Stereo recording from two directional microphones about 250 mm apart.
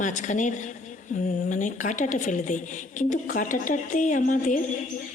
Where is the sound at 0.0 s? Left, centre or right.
Left.